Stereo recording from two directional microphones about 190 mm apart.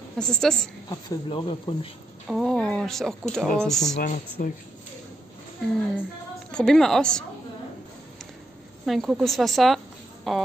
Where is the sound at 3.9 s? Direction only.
45° left (ahead or behind).